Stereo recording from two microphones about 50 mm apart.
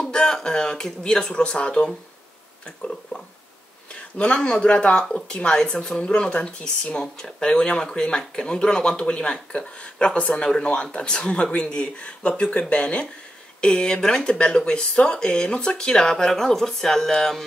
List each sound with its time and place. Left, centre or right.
0.1 s speech: centre